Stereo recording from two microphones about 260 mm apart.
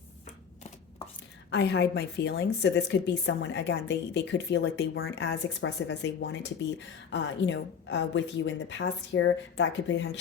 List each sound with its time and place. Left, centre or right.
1.5 s a woman's voice: left